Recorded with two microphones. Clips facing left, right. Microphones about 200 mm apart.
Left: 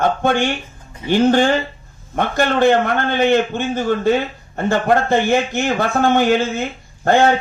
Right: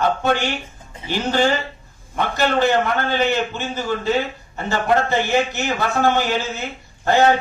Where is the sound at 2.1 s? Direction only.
50° left (ahead or behind).